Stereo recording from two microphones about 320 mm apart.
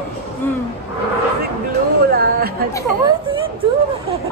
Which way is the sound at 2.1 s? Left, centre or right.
Right.